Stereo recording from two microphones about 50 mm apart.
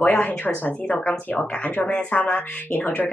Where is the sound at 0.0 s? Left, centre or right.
Left.